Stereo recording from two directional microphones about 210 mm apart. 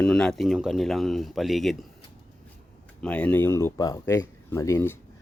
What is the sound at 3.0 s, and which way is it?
Speech, 5° left (ahead or behind).